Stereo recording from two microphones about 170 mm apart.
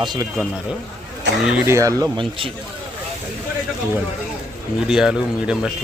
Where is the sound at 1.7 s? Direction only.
20° right (ahead or behind).